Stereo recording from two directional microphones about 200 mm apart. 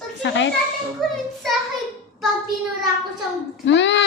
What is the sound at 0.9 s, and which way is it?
Speech, centre (ahead or behind).